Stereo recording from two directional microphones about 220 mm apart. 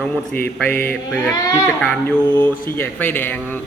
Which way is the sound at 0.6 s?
10° left (ahead or behind).